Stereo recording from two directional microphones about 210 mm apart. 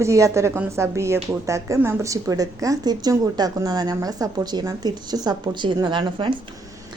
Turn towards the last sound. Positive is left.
turn(degrees=-20)  # may be behind; listen again after turning